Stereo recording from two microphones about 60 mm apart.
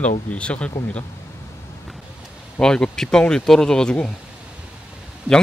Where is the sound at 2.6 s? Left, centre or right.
Centre.